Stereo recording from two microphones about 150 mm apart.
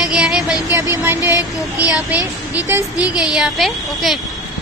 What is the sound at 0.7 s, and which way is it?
Speech, 20° right (ahead or behind).